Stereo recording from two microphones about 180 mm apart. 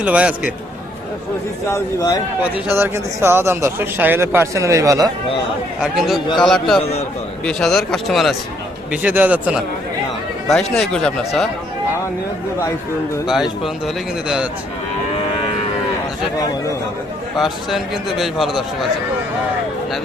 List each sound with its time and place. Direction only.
0.0 s speech: 5° right (ahead or behind)
1.7 s a man's voice: 20° left (ahead or behind)
2.7 s speech: 15° right (ahead or behind)
5.8 s a man's voice: centre (ahead or behind)
6.2 s a man's voice: 25° left (ahead or behind)
7.4 s a man's voice: centre (ahead or behind)
13.8 s a man's voice: 5° right (ahead or behind)
17.3 s a man's voice: centre (ahead or behind)